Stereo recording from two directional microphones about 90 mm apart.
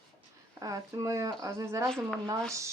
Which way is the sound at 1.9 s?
5° left (ahead or behind).